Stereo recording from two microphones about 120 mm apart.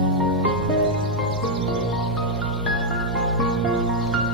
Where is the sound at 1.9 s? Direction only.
Centre (ahead or behind).